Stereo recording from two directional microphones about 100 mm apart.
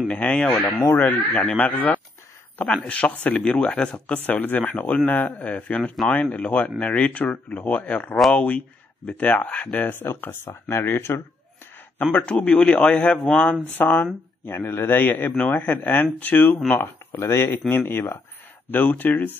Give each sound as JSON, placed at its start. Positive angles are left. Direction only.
{"t": 0.1, "sound": "speech", "side_deg": 10}